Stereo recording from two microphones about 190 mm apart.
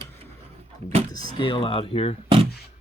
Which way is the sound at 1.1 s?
25° left (ahead or behind).